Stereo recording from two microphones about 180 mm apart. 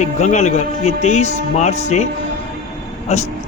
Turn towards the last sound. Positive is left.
turn(degrees=40)  # may be behind; listen again after turning